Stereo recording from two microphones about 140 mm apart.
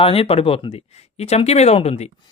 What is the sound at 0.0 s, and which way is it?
Speech, 45° left (ahead or behind).